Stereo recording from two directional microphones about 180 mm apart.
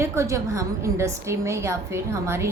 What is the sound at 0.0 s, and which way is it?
A woman's voice, 15° right (ahead or behind).